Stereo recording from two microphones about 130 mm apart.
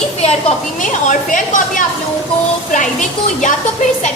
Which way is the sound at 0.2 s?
55° left (ahead or behind).